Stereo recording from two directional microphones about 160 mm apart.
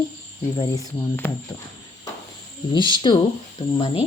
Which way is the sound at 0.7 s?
15° left (ahead or behind).